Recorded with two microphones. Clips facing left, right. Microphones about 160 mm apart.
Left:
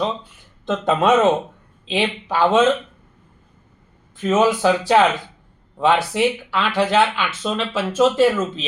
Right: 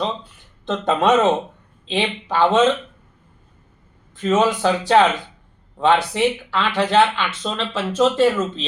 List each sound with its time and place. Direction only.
0.6 s speech: 5° left (ahead or behind)
4.2 s speech: 5° left (ahead or behind)